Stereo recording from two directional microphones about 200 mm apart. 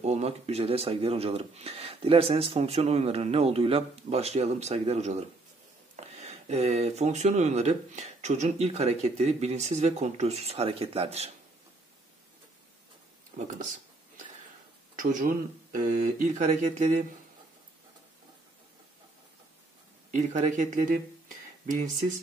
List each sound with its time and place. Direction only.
0.0 s speech: 30° right (ahead or behind)
13.3 s speech: 45° right (ahead or behind)
15.0 s speech: 40° right (ahead or behind)
20.1 s speech: 35° right (ahead or behind)